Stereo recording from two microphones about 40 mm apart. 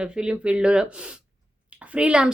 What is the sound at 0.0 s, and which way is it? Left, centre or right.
Speech, right.